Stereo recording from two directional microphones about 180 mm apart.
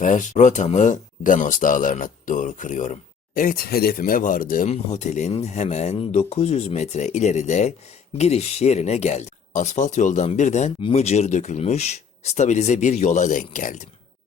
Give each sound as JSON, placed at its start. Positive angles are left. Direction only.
{"t": 0.0, "sound": "speech", "side_deg": 45}
{"t": 4.7, "sound": "speech", "side_deg": 40}